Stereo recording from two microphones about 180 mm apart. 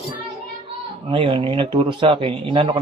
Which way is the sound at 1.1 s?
30° right (ahead or behind).